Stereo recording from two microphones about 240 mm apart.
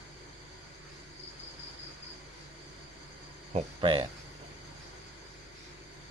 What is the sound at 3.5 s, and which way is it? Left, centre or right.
Speech, right.